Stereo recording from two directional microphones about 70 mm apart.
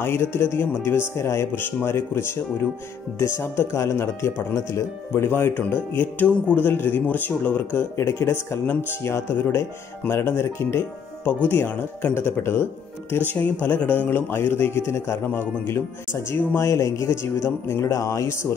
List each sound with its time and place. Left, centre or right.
0.0 s a man's voice: left
7.9 s a man's voice: left